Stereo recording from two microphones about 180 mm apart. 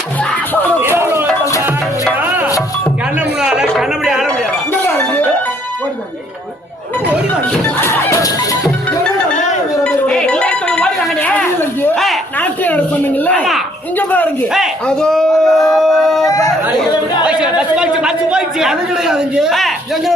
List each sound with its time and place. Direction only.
0.9 s music: 15° right (ahead or behind)
3.4 s a sound: 5° right (ahead or behind)
4.7 s music: 10° left (ahead or behind)
7.8 s music: 15° left (ahead or behind)
9.8 s a sound: 5° left (ahead or behind)
14.5 s speech: centre (ahead or behind)
15.7 s a sound: centre (ahead or behind)
16.2 s chatter: 20° left (ahead or behind)
17.2 s speech: 5° right (ahead or behind)